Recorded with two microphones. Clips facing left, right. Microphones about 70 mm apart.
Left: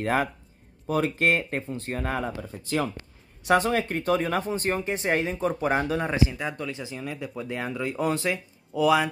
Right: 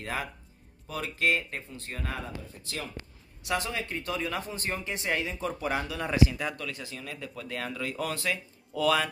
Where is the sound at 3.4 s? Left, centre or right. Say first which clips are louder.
Left 9 dB; left.